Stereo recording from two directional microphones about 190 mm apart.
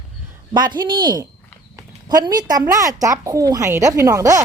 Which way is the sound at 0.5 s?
25° right (ahead or behind).